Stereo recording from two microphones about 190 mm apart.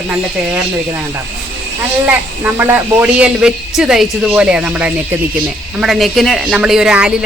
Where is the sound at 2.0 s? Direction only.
10° right (ahead or behind).